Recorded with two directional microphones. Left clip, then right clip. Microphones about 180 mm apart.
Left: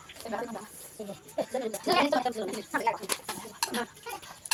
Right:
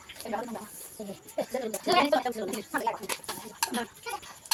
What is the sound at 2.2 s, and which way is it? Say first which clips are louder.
Speech: left 1 dB; 5° right (ahead or behind).